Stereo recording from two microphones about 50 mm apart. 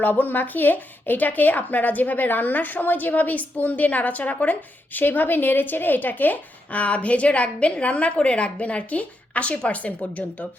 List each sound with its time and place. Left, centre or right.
0.0 s speech: left